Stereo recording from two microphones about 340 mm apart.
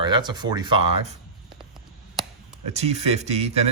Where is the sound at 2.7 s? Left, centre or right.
Centre.